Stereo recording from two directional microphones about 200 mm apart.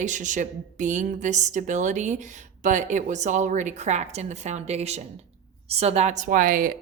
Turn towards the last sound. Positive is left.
turn(degrees=-45)  # may be behind; listen again after turning